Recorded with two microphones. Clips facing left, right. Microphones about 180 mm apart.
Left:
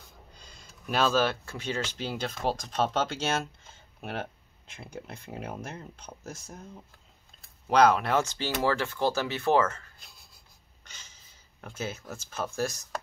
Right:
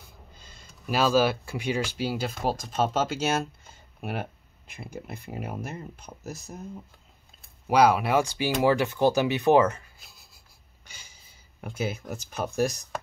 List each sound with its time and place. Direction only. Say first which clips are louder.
0.3 s speech: right 1 dB; centre (ahead or behind)
7.6 s speech: right 1 dB; 10° right (ahead or behind)
9.9 s writing: right 1 dB; 5° right (ahead or behind)